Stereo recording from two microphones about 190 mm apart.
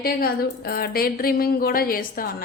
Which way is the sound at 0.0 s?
55° left (ahead or behind).